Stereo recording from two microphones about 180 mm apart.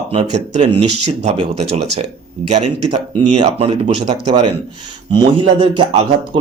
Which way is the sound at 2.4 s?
40° right (ahead or behind).